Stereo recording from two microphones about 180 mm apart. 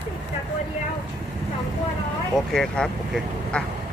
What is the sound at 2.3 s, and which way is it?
Speech, centre (ahead or behind).